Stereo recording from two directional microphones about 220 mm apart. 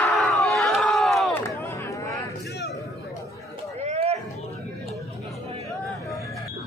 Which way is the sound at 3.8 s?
30° right (ahead or behind).